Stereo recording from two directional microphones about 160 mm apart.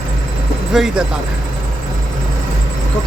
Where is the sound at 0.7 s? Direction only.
Centre (ahead or behind).